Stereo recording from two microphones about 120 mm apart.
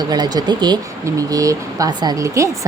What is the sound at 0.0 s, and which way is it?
A woman's voice, 35° right (ahead or behind).